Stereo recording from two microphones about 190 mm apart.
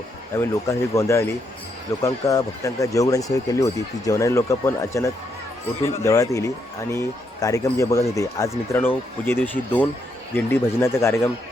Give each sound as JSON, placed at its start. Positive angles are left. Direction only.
{"t": 0.3, "sound": "speech", "side_deg": 15}